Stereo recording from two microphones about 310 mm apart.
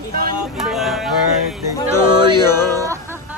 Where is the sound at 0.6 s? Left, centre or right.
Centre.